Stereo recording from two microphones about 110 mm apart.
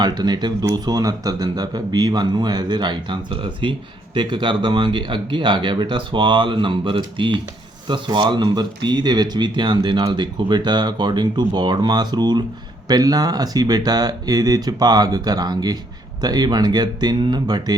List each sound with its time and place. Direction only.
0.0 s speech: 40° right (ahead or behind)